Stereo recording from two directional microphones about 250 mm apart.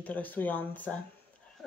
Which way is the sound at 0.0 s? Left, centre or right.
Centre.